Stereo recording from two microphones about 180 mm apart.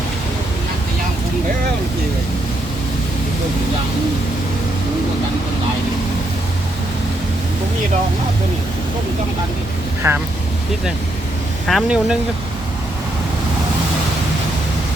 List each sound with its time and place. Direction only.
10.0 s speech: 15° right (ahead or behind)
11.7 s speech: centre (ahead or behind)